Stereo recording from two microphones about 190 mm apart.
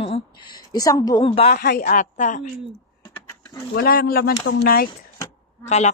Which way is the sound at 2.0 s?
40° left (ahead or behind).